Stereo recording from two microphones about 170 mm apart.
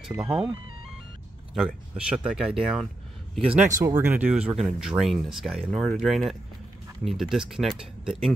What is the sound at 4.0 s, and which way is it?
Speech, 10° right (ahead or behind).